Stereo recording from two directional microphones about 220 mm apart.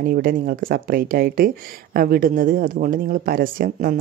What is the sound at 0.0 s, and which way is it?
Speech, 40° right (ahead or behind).